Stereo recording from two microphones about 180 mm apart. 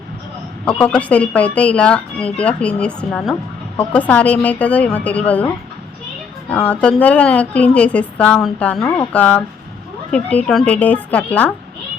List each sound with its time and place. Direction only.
0.6 s a woman's voice: 5° left (ahead or behind)
6.5 s a woman's voice: 5° left (ahead or behind)
8.8 s speech: 20° left (ahead or behind)
9.1 s a woman's voice: 10° left (ahead or behind)